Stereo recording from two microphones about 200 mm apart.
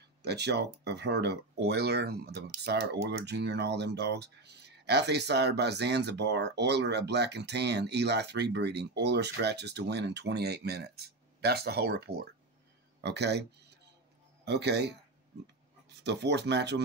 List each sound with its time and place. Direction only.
0.2 s speech: 55° right (ahead or behind)
14.4 s speech: 60° right (ahead or behind)
16.0 s speech: 60° right (ahead or behind)